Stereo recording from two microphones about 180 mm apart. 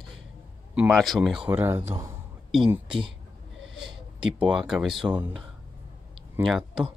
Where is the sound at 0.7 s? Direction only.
Centre (ahead or behind).